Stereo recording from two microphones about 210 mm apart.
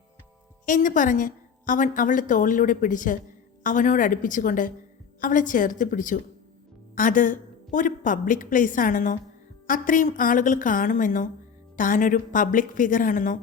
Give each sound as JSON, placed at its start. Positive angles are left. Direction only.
{"t": 0.6, "sound": "a woman's voice", "side_deg": 40}